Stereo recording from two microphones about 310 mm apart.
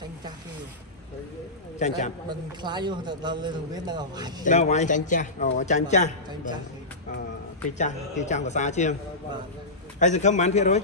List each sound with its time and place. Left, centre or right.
1.8 s a man's voice: left
2.6 s a man's voice: centre
4.5 s a man's voice: left
7.7 s a man's voice: left
9.9 s a man's voice: left